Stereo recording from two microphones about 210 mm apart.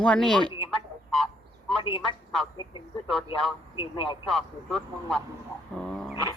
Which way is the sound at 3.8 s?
25° left (ahead or behind).